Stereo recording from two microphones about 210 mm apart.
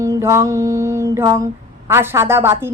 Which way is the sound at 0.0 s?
15° right (ahead or behind).